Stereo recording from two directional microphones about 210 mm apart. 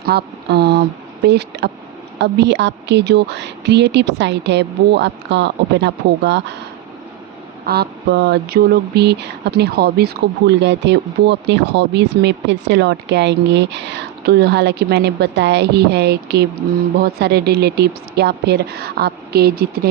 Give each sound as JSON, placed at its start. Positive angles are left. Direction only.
{"t": 0.0, "sound": "a woman's voice", "side_deg": -50}
{"t": 7.6, "sound": "speech", "side_deg": -50}